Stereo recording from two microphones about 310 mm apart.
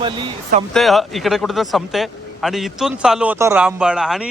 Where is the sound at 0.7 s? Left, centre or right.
Centre.